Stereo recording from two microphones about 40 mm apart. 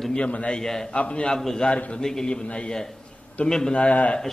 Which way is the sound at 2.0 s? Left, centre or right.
Centre.